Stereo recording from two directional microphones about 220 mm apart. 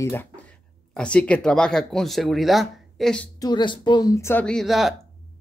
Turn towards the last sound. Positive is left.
turn(degrees=0)  # may be behind; listen again after turning